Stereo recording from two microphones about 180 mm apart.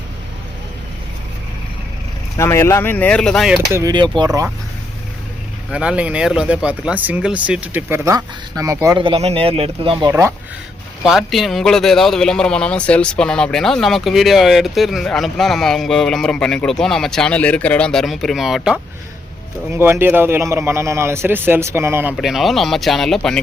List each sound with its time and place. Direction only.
2.4 s speech: 15° left (ahead or behind)
3.7 s cutlery: 20° right (ahead or behind)
5.7 s speech: 5° right (ahead or behind); by 10.1 s 30° right (ahead or behind)
10.1 s speech: 15° right (ahead or behind)
11.0 s a man's voice: centre (ahead or behind)
19.7 s speech: 15° right (ahead or behind)
22.1 s a man's voice: centre (ahead or behind)